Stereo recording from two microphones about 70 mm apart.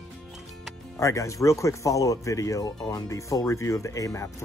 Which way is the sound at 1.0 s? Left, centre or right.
Left.